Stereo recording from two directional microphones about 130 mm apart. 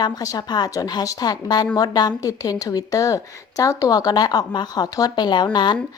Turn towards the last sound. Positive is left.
turn(degrees=35)  # may be behind; listen again after turning